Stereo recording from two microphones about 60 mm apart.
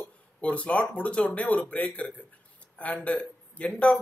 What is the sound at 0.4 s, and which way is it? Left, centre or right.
Speech, left.